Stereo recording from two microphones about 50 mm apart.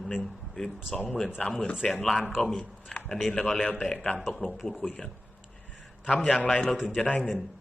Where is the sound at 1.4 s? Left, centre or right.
Left.